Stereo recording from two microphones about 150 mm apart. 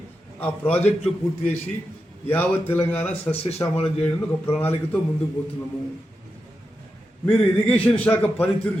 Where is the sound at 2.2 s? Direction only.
15° left (ahead or behind).